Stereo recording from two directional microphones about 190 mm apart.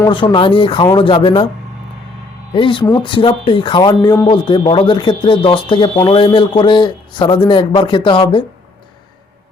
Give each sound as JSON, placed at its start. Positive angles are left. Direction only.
{"t": 0.0, "sound": "speech", "side_deg": 25}
{"t": 2.6, "sound": "speech", "side_deg": 25}